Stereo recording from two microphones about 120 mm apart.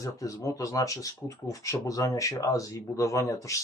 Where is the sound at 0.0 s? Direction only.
30° left (ahead or behind).